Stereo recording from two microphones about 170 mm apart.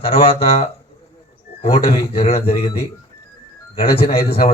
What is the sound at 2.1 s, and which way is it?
Speech, 35° left (ahead or behind).